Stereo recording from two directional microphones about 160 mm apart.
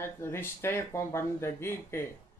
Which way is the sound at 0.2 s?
15° left (ahead or behind).